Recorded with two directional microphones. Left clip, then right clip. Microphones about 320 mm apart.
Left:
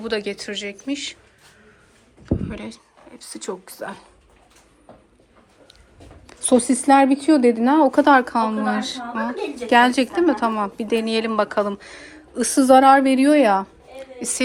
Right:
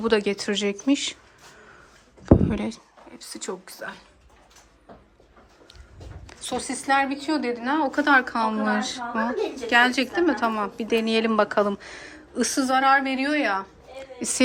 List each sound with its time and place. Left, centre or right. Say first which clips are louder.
0.0 s speech: right 3 dB; centre
2.5 s a woman's voice: right 4 dB; centre
6.2 s a sound: left 5 dB; centre
6.6 s a woman's voice: left 6 dB; centre
12.7 s a woman's voice: left 8 dB; centre